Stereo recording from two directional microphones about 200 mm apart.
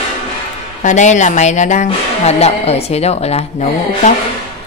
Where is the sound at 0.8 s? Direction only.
35° left (ahead or behind).